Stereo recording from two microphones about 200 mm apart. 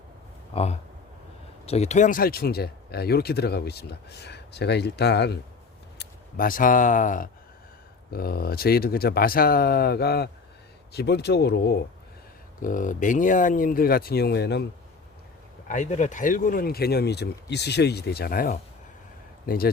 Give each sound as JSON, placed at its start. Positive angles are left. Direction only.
{"t": 0.5, "sound": "speech", "side_deg": 30}
{"t": 6.0, "sound": "speech", "side_deg": 45}
{"t": 12.6, "sound": "speech", "side_deg": 40}
{"t": 15.6, "sound": "speech", "side_deg": 40}